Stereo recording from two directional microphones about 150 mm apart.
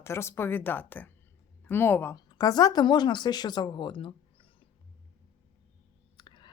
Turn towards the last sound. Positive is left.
turn(degrees=30)  # may be behind; listen again after turning